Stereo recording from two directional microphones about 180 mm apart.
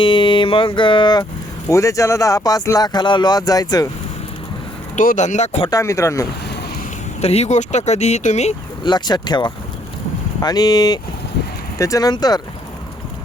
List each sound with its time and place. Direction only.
0.0 s a sound: 25° left (ahead or behind)
1.7 s speech: 15° left (ahead or behind)
4.9 s speech: 45° left (ahead or behind)
5.7 s speech: 15° left (ahead or behind)
7.2 s speech: 35° left (ahead or behind)
8.8 s speech: 25° left (ahead or behind)